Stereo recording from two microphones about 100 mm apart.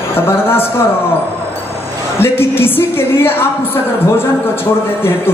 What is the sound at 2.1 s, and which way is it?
A woman's voice, 25° left (ahead or behind).